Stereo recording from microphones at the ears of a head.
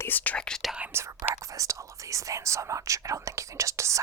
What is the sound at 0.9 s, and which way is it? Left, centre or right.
Speech, right.